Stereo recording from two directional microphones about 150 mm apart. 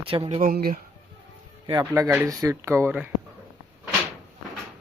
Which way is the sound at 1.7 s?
25° right (ahead or behind).